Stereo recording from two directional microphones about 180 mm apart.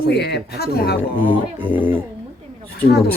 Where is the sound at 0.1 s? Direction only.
65° left (ahead or behind).